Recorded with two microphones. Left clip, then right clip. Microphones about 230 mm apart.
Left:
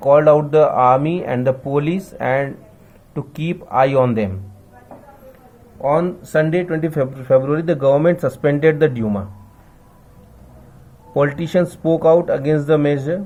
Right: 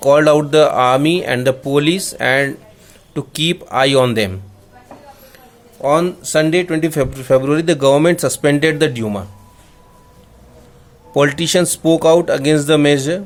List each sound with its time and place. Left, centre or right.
0.0 s speech: right
5.8 s speech: right
11.1 s speech: right